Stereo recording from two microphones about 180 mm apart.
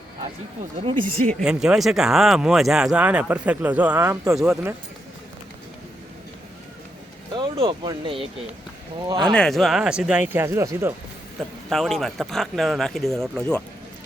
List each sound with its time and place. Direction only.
1.3 s speech: centre (ahead or behind); by 4.4 s 15° right (ahead or behind)
4.4 s speech: 5° right (ahead or behind)
7.3 s speech: 30° right (ahead or behind)
9.3 s speech: centre (ahead or behind); by 10.9 s 15° right (ahead or behind)
11.7 s speech: centre (ahead or behind)